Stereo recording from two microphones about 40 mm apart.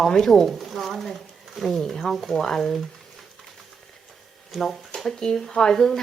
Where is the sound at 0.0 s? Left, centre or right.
Centre.